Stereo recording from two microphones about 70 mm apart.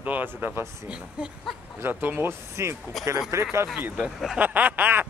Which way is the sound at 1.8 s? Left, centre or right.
Right.